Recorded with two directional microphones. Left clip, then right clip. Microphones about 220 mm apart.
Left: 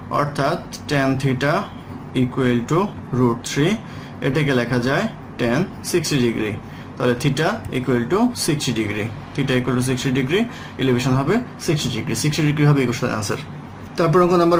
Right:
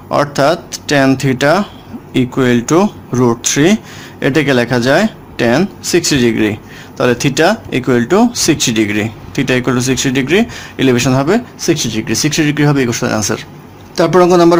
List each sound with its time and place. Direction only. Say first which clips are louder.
0.1 s speech: right 9 dB; 50° right (ahead or behind)